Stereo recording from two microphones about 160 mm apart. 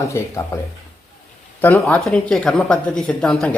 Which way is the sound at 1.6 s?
15° left (ahead or behind).